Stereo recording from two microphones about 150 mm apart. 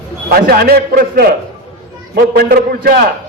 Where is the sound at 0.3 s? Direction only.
90° right.